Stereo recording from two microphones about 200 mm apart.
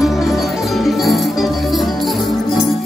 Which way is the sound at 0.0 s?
Centre (ahead or behind).